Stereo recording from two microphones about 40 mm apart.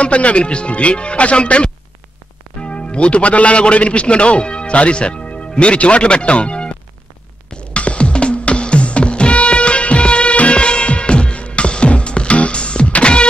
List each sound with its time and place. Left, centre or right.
0.0 s a man's voice: left
7.4 s music: left